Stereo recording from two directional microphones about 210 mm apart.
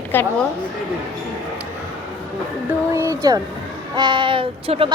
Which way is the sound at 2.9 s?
15° right (ahead or behind).